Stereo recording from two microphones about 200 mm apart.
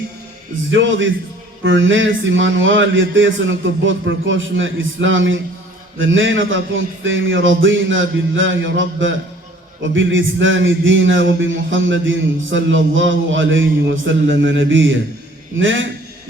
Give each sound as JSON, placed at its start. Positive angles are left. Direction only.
{"t": 0.7, "sound": "a man's voice", "side_deg": -70}